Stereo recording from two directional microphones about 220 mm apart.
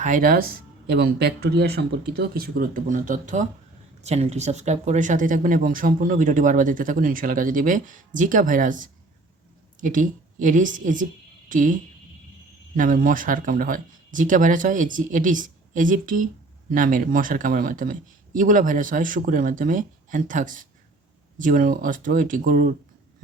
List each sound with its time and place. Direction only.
0.0 s speech: 40° right (ahead or behind)